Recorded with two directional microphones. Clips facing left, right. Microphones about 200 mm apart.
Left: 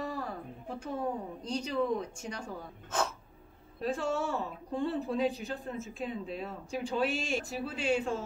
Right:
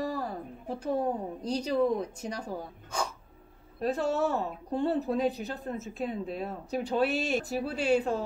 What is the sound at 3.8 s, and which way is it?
Speech, 40° right (ahead or behind).